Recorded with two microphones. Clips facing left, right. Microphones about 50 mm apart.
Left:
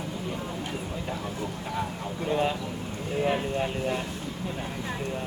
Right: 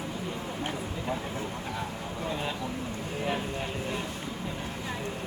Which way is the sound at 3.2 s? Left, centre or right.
Centre.